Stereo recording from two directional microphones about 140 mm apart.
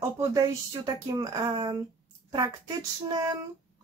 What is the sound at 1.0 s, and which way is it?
Speech, 25° right (ahead or behind).